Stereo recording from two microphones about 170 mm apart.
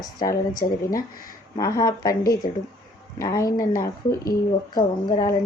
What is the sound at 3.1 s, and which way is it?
Speech, 20° left (ahead or behind).